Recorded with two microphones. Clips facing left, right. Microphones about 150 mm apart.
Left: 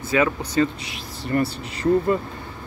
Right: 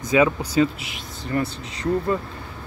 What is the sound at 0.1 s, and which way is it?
Speech, 15° right (ahead or behind).